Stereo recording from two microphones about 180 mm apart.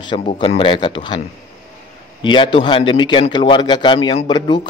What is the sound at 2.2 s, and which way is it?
A man's voice, 25° left (ahead or behind).